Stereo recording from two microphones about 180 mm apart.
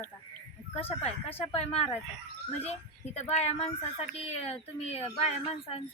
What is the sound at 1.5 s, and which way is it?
A woman's voice, 35° left (ahead or behind).